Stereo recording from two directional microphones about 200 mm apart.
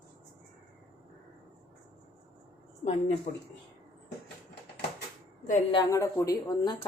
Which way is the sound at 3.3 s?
40° left (ahead or behind).